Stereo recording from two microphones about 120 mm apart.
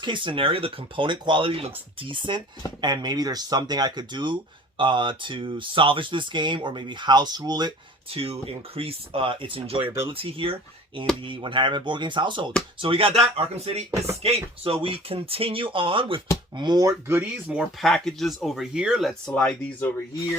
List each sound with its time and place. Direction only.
0.0 s speech: 45° right (ahead or behind)
8.1 s speech: 55° right (ahead or behind)
16.6 s speech: 35° right (ahead or behind)
17.1 s speech: 15° right (ahead or behind)
17.6 s speech: centre (ahead or behind)
19.2 s speech: 10° left (ahead or behind)